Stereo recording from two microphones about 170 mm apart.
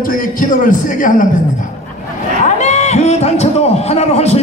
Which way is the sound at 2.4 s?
40° left (ahead or behind).